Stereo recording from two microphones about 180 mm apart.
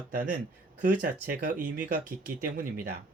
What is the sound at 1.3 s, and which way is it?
Speech, 50° right (ahead or behind).